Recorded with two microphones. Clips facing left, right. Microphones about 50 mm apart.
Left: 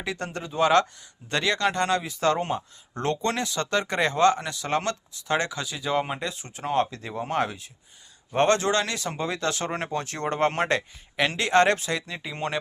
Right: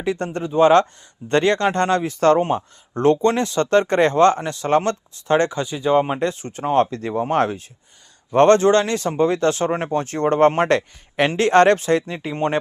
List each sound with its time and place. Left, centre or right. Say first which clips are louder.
0.0 s speech: right 8 dB; right
2.9 s speech: right 10 dB; right
6.1 s a man's voice: right 10 dB; right